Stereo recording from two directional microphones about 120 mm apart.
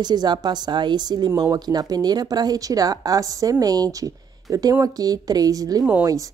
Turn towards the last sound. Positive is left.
turn(degrees=-30)  # may be behind; listen again after turning